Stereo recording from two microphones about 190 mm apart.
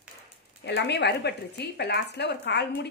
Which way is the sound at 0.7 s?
65° left (ahead or behind).